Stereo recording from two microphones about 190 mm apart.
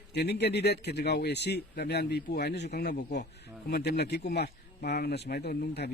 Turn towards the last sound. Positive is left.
turn(degrees=60)  # may be behind; listen again after turning